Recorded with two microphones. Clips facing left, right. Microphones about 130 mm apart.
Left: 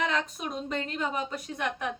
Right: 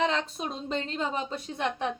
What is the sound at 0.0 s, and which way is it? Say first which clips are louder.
A woman's voice: right 2 dB; 30° right (ahead or behind).